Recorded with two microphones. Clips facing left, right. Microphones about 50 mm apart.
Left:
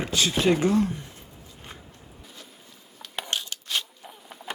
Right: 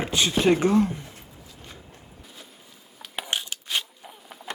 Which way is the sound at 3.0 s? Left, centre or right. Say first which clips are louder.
Right 1 dB; centre.